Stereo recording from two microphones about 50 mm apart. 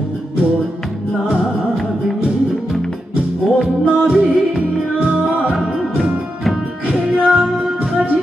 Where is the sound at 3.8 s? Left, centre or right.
Right.